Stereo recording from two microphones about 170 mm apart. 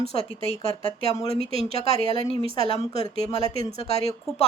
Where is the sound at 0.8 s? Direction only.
35° left (ahead or behind).